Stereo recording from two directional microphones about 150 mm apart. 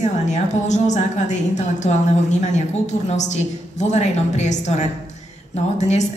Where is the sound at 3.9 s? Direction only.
50° left (ahead or behind).